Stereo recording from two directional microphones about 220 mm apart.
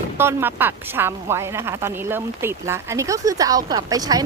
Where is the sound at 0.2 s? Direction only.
10° right (ahead or behind).